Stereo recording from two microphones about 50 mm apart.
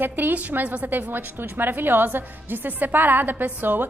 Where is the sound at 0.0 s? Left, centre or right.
Right.